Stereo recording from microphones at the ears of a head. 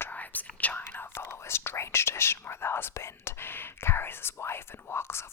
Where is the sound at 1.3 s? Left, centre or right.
Left.